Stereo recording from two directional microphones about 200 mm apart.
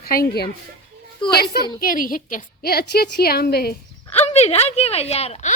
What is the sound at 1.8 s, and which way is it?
Speech, 45° left (ahead or behind).